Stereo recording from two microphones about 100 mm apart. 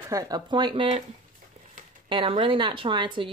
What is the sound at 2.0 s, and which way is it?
Speech, 60° right (ahead or behind).